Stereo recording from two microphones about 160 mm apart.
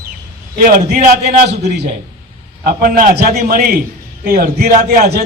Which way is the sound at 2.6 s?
55° right (ahead or behind).